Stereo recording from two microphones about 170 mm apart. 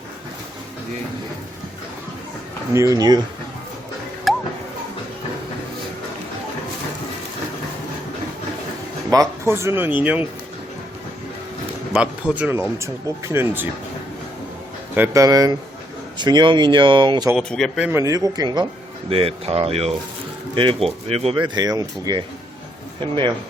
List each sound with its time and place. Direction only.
2.7 s speech: 20° right (ahead or behind)
4.3 s music: centre (ahead or behind)
9.4 s speech: 15° right (ahead or behind)
11.9 s speech: 10° right (ahead or behind)
14.9 s speech: 15° right (ahead or behind)
17.3 s speech: centre (ahead or behind)
17.8 s speech: 15° right (ahead or behind)